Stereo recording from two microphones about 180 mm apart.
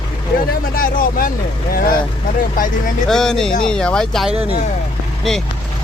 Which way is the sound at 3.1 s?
5° left (ahead or behind).